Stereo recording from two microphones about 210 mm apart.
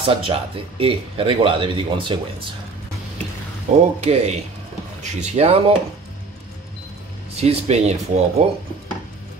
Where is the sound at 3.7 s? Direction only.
30° right (ahead or behind).